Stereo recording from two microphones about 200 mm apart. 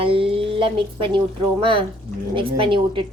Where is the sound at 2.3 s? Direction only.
25° right (ahead or behind).